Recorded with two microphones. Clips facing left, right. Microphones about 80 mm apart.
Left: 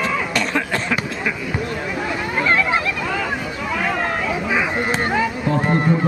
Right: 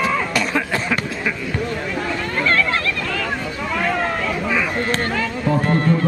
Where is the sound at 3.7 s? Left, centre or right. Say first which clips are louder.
Right 1 dB; centre.